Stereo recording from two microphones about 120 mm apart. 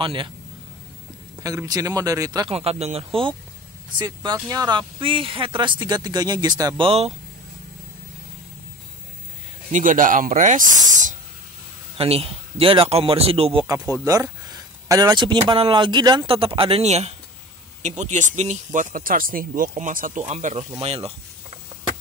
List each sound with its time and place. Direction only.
0.0 s a man's voice: 45° right (ahead or behind)
1.4 s speech: 30° right (ahead or behind)
2.5 s speech: 60° right (ahead or behind)
4.0 s speech: 35° right (ahead or behind)
9.7 s speech: 90° right
12.0 s a man's voice: 55° right (ahead or behind)
14.0 s speech: 25° right (ahead or behind)
16.3 s a man's voice: 50° right (ahead or behind)
17.8 s speech: 75° right (ahead or behind); by 21.1 s 55° right (ahead or behind)